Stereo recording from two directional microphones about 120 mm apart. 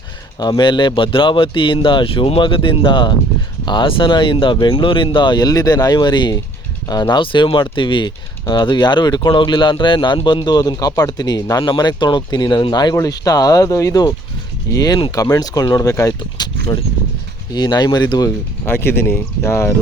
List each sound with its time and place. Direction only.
0.3 s speech: 35° left (ahead or behind)
18.6 s speech: 20° left (ahead or behind)